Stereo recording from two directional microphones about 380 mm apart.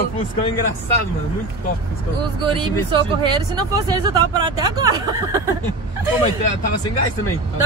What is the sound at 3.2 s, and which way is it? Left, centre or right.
Speech, centre.